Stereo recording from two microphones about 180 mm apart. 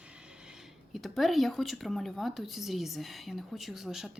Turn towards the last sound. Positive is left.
turn(degrees=0)  # may be behind; listen again after turning